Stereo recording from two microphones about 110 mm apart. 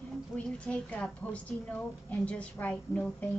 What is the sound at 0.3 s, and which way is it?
A woman's voice, 20° left (ahead or behind).